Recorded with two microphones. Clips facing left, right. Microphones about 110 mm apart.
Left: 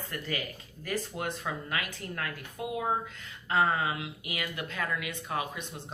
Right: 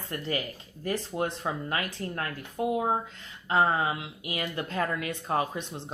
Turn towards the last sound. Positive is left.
turn(degrees=-35)  # may be behind; listen again after turning